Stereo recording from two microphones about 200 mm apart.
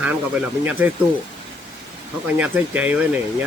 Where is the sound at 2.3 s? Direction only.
10° right (ahead or behind).